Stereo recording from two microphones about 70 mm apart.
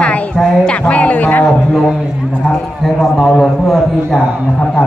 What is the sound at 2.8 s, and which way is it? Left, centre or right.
A man's voice, centre.